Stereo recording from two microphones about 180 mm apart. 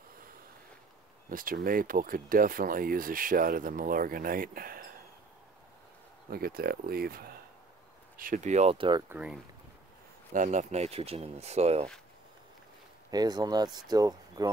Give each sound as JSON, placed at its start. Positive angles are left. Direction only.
{"t": 1.3, "sound": "speech", "side_deg": -50}
{"t": 6.3, "sound": "speech", "side_deg": -55}
{"t": 8.2, "sound": "speech", "side_deg": -45}
{"t": 9.1, "sound": "speech", "side_deg": -5}
{"t": 10.3, "sound": "speech", "side_deg": -45}
{"t": 13.1, "sound": "speech", "side_deg": -20}